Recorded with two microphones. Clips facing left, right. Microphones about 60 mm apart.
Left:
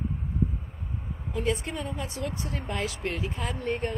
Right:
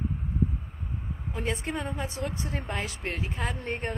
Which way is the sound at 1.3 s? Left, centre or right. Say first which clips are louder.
Left 2 dB; right.